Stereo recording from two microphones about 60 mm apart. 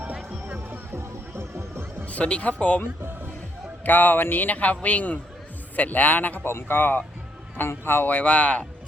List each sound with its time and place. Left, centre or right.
0.4 s music: right
0.9 s music: right
2.0 s a man's voice: left
3.8 s a man's voice: left
6.5 s a man's voice: left